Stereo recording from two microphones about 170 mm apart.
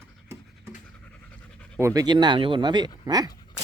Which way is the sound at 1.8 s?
20° right (ahead or behind).